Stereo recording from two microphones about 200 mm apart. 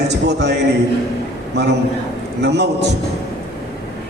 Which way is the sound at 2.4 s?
55° right (ahead or behind).